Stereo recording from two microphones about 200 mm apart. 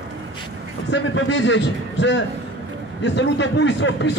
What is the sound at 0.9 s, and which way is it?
A man's voice, 65° left (ahead or behind).